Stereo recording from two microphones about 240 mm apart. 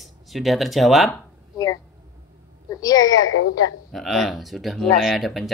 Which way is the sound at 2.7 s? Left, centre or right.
Centre.